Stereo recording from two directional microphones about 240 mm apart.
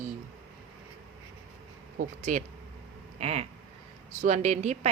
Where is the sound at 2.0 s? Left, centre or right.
Right.